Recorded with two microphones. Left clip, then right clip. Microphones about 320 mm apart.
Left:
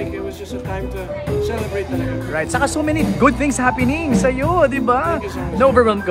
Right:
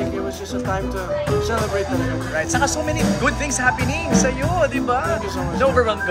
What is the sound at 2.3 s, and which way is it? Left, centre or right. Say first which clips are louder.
Speech: left 2 dB; left.